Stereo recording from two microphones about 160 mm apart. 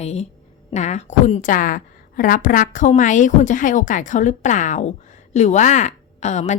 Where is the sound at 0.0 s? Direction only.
40° left (ahead or behind).